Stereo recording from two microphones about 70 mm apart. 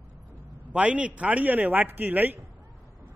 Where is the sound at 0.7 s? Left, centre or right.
Centre.